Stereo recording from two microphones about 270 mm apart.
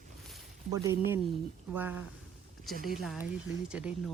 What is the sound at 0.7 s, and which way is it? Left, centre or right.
Speech, centre.